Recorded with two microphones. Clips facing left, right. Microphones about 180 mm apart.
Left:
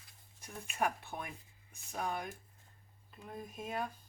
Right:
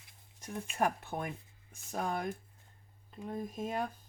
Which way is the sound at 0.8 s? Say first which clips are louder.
Right 3 dB; 45° right (ahead or behind).